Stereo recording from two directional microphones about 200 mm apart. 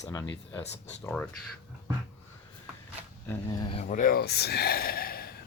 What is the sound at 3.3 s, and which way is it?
Speech, 20° left (ahead or behind).